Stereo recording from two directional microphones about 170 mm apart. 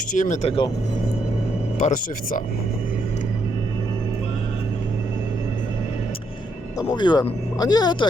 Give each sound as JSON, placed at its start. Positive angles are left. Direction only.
{"t": 0.1, "sound": "speech", "side_deg": 45}
{"t": 1.8, "sound": "speech", "side_deg": 50}
{"t": 6.7, "sound": "speech", "side_deg": 25}